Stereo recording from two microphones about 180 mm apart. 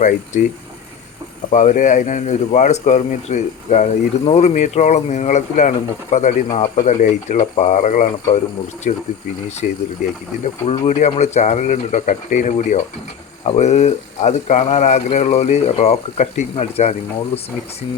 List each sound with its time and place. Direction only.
0.3 s speech: 40° left (ahead or behind)